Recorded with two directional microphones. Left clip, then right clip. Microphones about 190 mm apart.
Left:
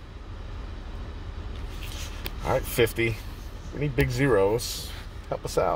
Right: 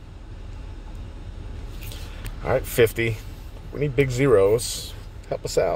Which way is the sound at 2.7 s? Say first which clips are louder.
Right 6 dB; 30° right (ahead or behind).